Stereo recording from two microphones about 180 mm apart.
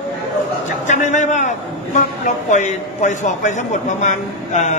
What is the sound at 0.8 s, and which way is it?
A man's voice, 40° left (ahead or behind).